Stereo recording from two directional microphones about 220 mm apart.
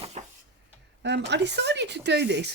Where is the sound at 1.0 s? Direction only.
50° right (ahead or behind).